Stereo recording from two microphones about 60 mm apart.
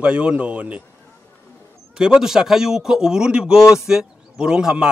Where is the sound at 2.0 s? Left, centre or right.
Centre.